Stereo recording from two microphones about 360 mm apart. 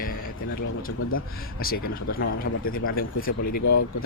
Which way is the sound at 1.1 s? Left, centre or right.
Left.